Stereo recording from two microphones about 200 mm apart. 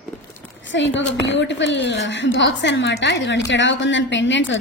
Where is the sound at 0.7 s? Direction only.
65° left (ahead or behind).